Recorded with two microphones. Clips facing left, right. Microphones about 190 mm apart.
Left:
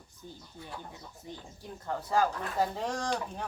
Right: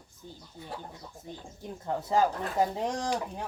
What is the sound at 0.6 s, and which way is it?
Speech, 25° right (ahead or behind).